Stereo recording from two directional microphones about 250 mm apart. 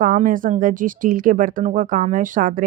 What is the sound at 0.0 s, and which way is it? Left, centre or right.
Speech, right.